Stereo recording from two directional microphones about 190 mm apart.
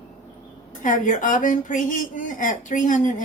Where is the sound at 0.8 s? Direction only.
45° left (ahead or behind).